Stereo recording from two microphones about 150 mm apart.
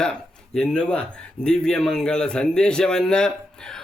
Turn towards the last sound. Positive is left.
turn(degrees=5)  # may be behind; listen again after turning